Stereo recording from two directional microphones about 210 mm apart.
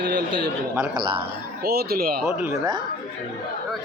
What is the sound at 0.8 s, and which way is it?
Speech, 20° right (ahead or behind).